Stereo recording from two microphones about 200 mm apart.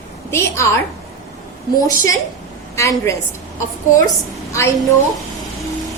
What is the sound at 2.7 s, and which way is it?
Speech, 15° left (ahead or behind).